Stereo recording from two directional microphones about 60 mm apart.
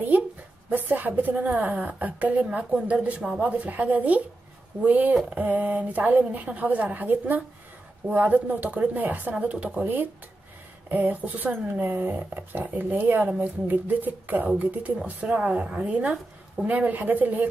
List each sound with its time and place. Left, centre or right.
0.7 s a woman's voice: right